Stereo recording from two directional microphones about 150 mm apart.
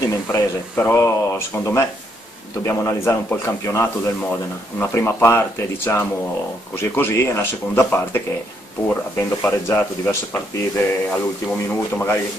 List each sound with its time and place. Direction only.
0.0 s speech: 20° left (ahead or behind)